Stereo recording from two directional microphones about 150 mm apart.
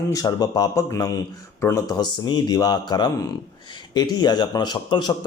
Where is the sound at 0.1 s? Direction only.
25° left (ahead or behind).